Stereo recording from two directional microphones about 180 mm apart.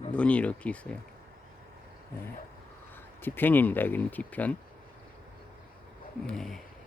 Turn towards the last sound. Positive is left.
turn(degrees=0)  # may be behind; listen again after turning